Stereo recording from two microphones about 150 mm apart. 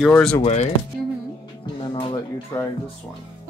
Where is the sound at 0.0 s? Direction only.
5° left (ahead or behind).